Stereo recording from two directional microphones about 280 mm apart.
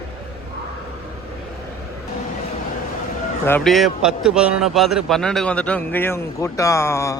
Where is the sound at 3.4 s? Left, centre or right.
Centre.